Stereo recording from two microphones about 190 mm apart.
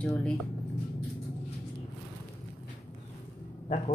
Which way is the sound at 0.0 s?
5° left (ahead or behind).